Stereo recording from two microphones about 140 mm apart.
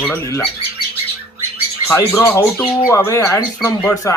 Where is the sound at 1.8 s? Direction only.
15° left (ahead or behind).